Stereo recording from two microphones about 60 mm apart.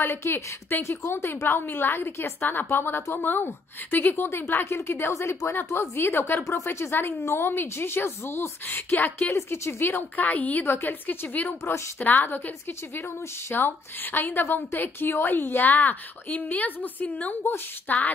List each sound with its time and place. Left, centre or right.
0.0 s a woman's voice: left
6.4 s a woman's voice: left